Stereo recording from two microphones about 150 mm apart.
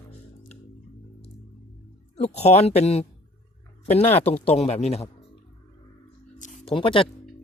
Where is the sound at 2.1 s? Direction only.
45° left (ahead or behind).